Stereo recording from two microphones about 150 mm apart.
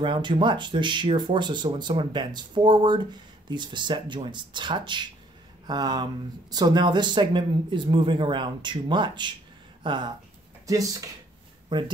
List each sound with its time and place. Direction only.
0.0 s speech: 30° right (ahead or behind)